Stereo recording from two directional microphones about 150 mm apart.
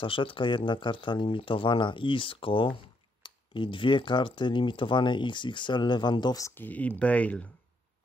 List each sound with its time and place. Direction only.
0.0 s speech: 35° left (ahead or behind); by 7.4 s 10° left (ahead or behind)